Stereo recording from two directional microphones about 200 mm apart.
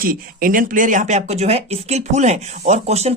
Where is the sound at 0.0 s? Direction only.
45° right (ahead or behind).